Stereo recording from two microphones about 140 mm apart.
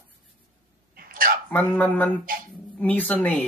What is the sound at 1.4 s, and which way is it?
Speech, 10° left (ahead or behind).